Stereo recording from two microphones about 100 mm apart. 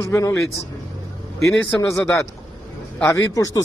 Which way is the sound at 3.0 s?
35° left (ahead or behind).